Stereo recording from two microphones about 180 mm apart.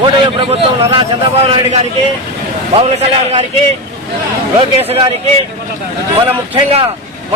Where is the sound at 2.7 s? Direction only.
35° right (ahead or behind).